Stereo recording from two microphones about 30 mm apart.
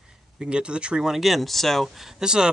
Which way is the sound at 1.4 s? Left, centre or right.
Centre.